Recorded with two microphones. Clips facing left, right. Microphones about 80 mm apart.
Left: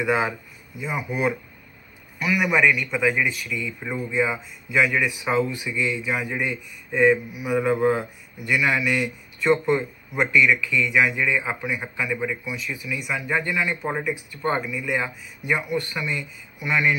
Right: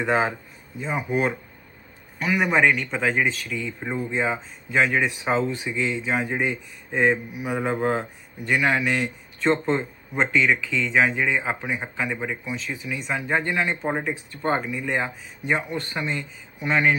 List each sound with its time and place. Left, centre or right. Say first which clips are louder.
0.0 s speech: even; right